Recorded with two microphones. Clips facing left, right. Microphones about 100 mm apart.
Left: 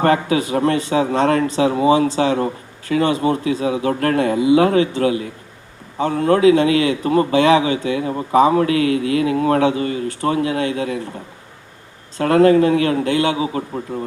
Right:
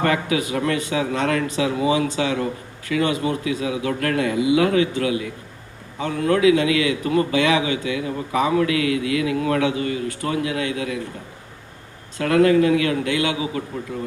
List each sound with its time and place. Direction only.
0.0 s speech: 35° left (ahead or behind)
12.1 s speech: 35° left (ahead or behind)